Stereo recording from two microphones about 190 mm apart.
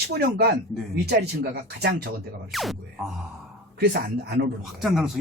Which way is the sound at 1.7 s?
60° right (ahead or behind).